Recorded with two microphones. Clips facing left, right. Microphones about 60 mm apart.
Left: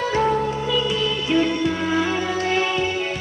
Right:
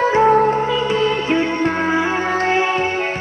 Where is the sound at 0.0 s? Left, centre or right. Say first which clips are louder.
Right 7 dB; right.